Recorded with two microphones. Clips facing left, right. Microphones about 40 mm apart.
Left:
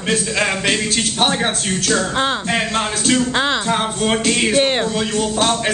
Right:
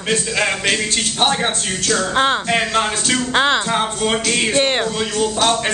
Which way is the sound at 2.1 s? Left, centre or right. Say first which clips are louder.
Right 2 dB; centre.